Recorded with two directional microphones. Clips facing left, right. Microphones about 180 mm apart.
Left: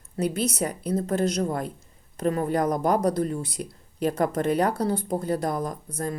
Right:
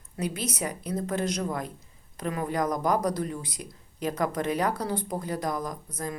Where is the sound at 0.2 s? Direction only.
30° left (ahead or behind).